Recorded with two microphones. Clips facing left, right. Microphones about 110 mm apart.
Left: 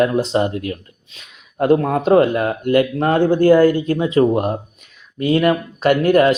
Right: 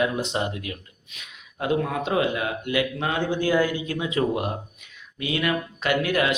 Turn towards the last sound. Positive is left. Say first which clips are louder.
# left 10 dB
turn(degrees=45)  # may be behind; listen again after turning